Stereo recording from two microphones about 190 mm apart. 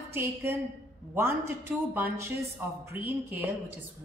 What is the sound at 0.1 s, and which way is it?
A woman's voice, 10° right (ahead or behind).